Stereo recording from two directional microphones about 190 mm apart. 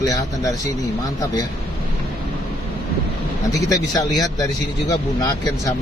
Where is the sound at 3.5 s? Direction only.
20° left (ahead or behind).